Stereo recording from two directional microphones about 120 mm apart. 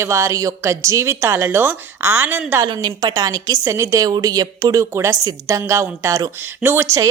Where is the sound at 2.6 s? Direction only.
35° right (ahead or behind).